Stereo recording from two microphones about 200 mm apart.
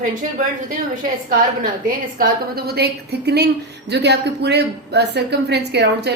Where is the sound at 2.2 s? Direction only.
50° right (ahead or behind).